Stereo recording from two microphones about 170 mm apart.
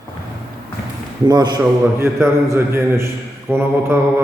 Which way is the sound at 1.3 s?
25° right (ahead or behind).